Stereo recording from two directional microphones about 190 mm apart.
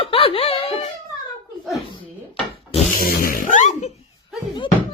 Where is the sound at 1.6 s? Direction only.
Centre (ahead or behind).